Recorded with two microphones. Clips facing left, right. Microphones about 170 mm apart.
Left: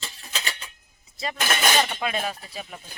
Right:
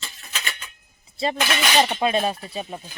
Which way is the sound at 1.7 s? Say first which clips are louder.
Right 5 dB; 25° right (ahead or behind).